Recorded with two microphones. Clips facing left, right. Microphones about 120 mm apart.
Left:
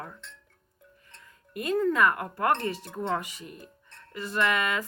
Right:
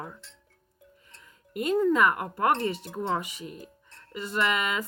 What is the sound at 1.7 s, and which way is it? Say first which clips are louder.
Speech: right 1 dB; 15° right (ahead or behind).